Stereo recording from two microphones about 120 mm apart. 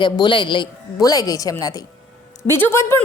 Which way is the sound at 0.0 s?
40° left (ahead or behind).